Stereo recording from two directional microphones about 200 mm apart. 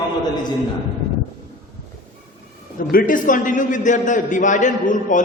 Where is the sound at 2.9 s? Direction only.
45° left (ahead or behind).